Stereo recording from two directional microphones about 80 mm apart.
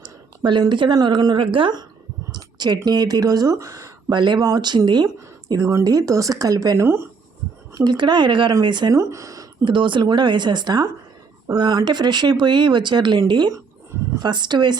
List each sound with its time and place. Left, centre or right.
0.0 s a sound: right
0.7 s a woman's voice: right
0.9 s speech: right
2.3 s speech: right
4.1 s speech: right
4.4 s speech: right
6.7 s speech: right
7.7 s speech: right
7.9 s speech: right
8.9 s speech: right
9.6 s speech: right